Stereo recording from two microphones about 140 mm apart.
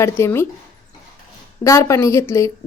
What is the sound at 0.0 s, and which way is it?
Speech, 20° left (ahead or behind).